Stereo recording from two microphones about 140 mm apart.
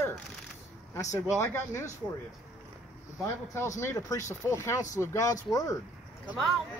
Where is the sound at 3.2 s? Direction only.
20° left (ahead or behind).